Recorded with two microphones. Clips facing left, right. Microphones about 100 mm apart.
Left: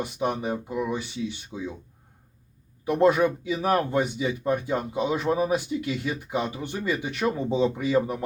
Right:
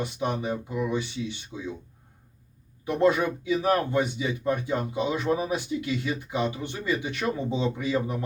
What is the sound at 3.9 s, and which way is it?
Speech, 40° left (ahead or behind).